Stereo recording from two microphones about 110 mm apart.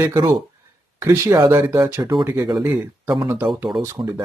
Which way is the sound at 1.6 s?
15° right (ahead or behind).